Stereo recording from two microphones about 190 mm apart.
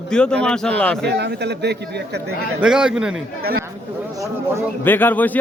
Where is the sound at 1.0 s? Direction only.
60° right (ahead or behind).